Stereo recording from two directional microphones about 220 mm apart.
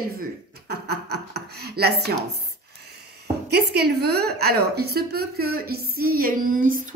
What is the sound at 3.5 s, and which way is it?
A woman's voice, 45° right (ahead or behind).